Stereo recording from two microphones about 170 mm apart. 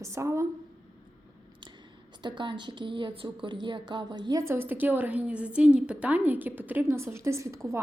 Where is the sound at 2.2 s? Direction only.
25° right (ahead or behind).